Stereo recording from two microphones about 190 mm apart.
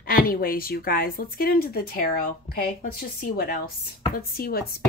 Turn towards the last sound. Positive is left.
turn(degrees=55)  # may be behind; listen again after turning